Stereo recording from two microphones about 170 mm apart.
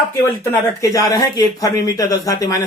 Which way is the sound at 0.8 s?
20° left (ahead or behind).